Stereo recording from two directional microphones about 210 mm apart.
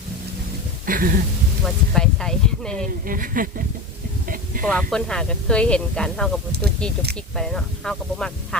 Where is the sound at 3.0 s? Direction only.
40° right (ahead or behind).